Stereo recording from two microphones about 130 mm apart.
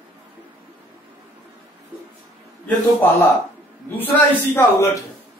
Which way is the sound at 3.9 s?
15° left (ahead or behind).